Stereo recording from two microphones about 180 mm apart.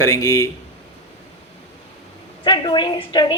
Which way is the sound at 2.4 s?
25° left (ahead or behind).